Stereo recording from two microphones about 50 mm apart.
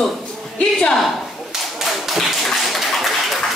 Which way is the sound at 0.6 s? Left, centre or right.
Left.